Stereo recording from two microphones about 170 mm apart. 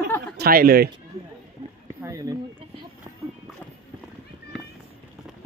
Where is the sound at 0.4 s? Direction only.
60° right (ahead or behind).